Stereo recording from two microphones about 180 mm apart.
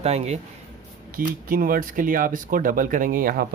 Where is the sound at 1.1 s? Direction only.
50° right (ahead or behind).